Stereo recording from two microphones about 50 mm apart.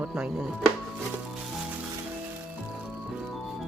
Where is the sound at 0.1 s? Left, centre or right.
Centre.